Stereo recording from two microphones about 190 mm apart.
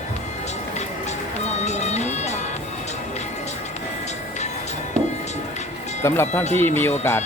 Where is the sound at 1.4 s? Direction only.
35° left (ahead or behind).